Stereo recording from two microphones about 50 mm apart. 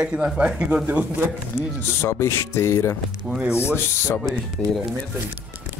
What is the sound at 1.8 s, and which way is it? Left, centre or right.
Speech, left.